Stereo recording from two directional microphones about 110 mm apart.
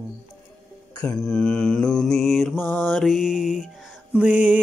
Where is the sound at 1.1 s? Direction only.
5° left (ahead or behind).